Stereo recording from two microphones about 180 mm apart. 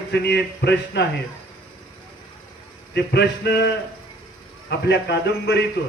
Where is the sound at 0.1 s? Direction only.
65° left (ahead or behind).